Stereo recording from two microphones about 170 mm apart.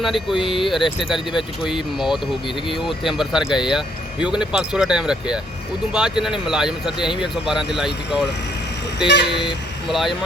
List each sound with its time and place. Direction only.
0.0 s speech: centre (ahead or behind)
9.0 s speech: 85° left
9.9 s speech: centre (ahead or behind)